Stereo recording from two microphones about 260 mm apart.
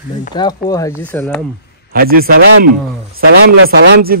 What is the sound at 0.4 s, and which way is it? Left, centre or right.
Speech, centre.